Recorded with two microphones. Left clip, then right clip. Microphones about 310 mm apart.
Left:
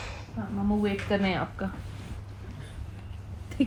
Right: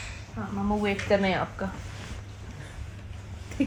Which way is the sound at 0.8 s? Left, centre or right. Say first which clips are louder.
Right 4 dB; right.